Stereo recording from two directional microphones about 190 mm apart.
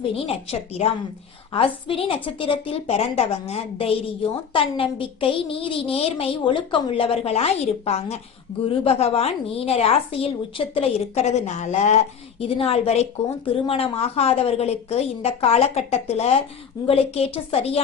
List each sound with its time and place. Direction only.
0.3 s a woman's voice: 30° left (ahead or behind)